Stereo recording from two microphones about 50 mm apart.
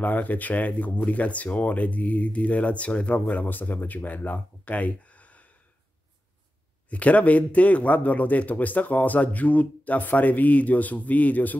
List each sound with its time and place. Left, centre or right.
0.0 s speech: left
6.9 s speech: left